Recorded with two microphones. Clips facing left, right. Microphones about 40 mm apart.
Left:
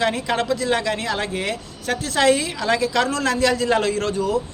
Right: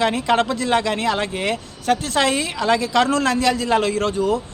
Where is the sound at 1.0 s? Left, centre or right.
Right.